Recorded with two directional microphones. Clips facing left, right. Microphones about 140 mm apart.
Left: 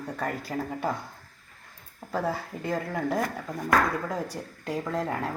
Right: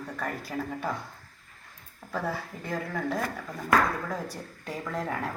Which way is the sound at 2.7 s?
15° left (ahead or behind).